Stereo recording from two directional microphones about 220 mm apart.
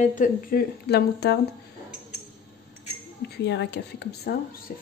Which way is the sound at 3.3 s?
50° left (ahead or behind).